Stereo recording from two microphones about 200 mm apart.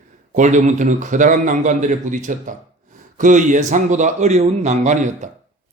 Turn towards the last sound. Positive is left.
turn(degrees=-35)  # may be behind; listen again after turning